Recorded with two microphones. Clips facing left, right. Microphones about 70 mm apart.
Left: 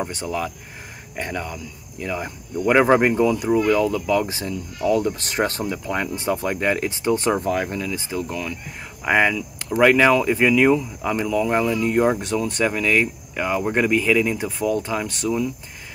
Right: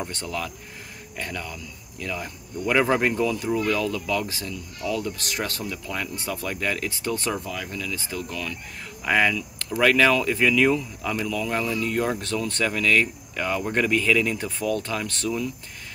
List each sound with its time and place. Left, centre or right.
0.0 s speech: centre
7.4 s speech: left; by 15.5 s centre